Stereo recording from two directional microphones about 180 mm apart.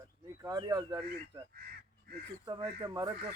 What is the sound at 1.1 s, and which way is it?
Speech, 60° right (ahead or behind).